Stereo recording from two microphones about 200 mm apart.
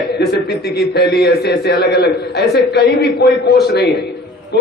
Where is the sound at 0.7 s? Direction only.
50° left (ahead or behind).